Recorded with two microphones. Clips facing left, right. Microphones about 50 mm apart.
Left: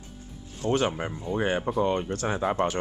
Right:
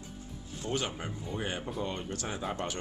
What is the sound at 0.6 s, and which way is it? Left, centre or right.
Speech, left.